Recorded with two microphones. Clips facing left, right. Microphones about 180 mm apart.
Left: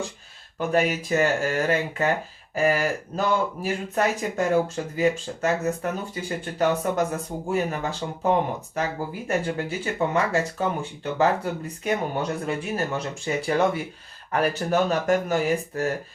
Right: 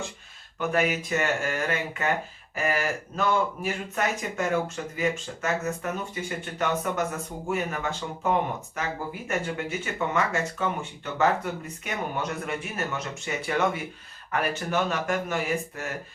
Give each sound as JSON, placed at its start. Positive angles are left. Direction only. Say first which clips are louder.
{"t": 0.7, "sound": "speech", "louder": "left 3 dB", "side_deg": 35}